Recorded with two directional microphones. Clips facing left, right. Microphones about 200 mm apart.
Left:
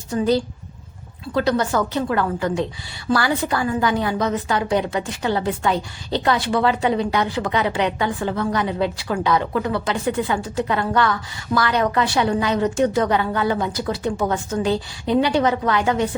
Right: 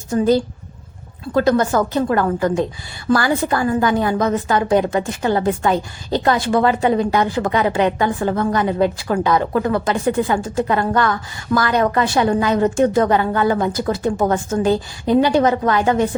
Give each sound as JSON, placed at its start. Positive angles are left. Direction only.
{"t": 0.1, "sound": "a woman's voice", "side_deg": -45}